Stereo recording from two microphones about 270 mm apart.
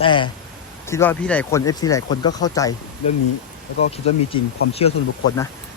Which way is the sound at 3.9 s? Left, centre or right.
Left.